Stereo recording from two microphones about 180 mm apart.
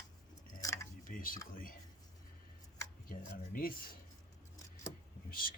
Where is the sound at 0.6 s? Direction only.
20° left (ahead or behind).